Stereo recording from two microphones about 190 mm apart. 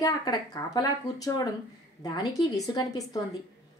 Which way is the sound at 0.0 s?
20° left (ahead or behind).